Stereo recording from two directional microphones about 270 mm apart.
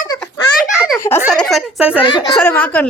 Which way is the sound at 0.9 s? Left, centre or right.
Centre.